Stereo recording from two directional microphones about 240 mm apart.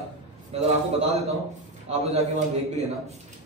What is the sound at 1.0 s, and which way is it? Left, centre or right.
Speech, right.